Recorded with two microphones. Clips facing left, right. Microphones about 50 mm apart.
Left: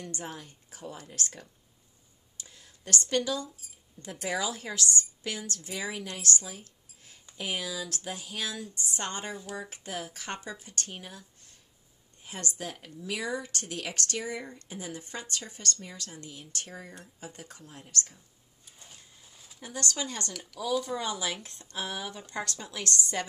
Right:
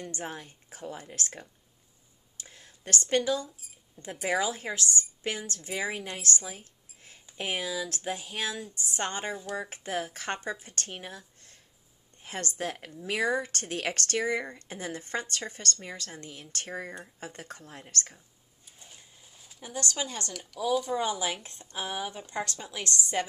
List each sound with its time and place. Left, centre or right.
0.0 s speech: right
2.3 s a sound: right
4.0 s speech: centre
4.3 s speech: right
19.3 s a sound: centre
19.6 s speech: right
20.5 s speech: centre
20.9 s speech: right